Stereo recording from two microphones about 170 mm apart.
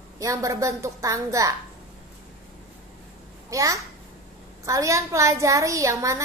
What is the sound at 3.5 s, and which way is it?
A child's voice, 20° right (ahead or behind).